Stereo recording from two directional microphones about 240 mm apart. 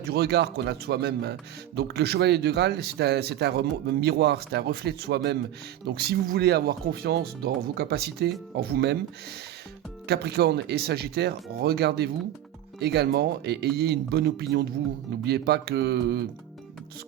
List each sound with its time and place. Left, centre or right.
0.1 s speech: right
10.1 s speech: right